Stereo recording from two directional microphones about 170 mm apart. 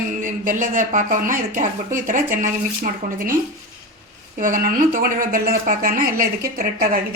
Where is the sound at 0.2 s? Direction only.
50° right (ahead or behind).